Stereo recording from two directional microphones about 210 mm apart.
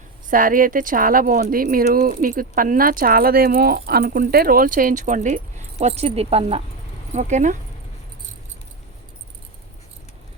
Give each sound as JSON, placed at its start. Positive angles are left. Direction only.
{"t": 0.3, "sound": "speech", "side_deg": -40}